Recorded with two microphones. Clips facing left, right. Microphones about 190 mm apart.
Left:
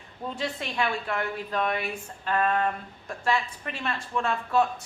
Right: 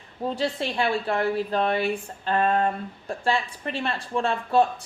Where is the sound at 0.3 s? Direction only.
30° right (ahead or behind).